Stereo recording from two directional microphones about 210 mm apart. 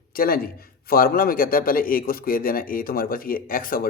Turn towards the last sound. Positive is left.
turn(degrees=40)  # may be behind; listen again after turning